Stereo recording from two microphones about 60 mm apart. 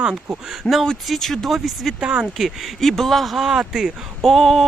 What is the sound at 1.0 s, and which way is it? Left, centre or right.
Speech, centre.